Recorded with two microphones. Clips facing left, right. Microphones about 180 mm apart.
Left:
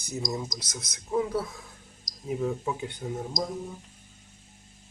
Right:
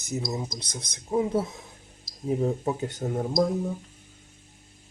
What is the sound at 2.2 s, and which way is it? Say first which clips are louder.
Speech: right 4 dB; 35° right (ahead or behind).